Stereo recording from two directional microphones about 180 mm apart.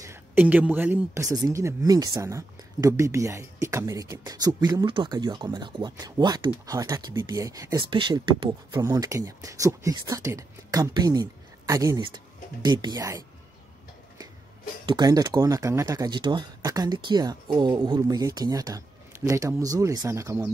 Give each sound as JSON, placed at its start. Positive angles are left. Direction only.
{"t": 0.0, "sound": "speech", "side_deg": -10}
{"t": 14.9, "sound": "speech", "side_deg": -20}